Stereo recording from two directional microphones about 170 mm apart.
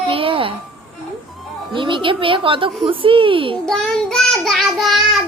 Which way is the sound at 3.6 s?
5° left (ahead or behind).